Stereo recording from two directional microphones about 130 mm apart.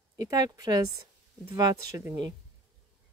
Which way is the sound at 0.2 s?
30° right (ahead or behind).